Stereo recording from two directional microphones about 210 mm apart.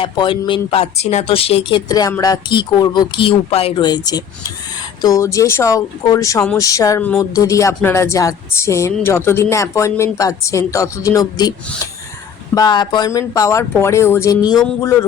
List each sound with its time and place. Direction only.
0.0 s speech: 25° left (ahead or behind)
12.5 s speech: 20° left (ahead or behind)